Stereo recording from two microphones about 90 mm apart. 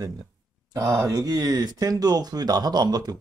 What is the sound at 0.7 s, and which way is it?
Speech, 45° right (ahead or behind).